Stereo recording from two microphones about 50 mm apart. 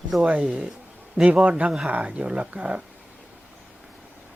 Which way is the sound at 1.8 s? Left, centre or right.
Right.